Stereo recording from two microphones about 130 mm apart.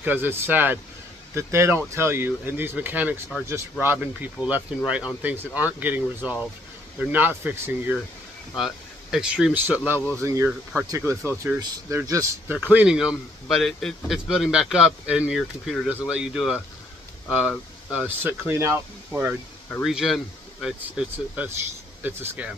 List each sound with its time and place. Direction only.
0.0 s speech: 15° right (ahead or behind)
8.5 s speech: centre (ahead or behind); by 19.3 s 20° right (ahead or behind)
19.8 s speech: centre (ahead or behind)